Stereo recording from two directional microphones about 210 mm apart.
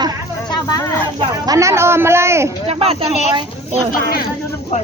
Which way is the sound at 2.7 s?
25° right (ahead or behind).